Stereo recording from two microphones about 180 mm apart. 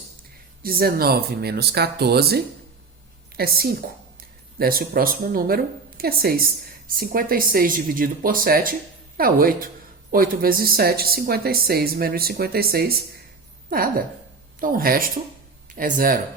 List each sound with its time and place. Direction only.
0.6 s speech: 55° right (ahead or behind)